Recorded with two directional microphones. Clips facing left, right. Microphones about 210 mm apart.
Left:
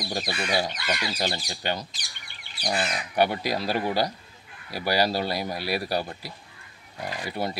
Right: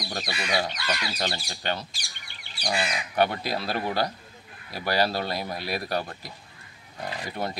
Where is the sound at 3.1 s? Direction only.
10° left (ahead or behind).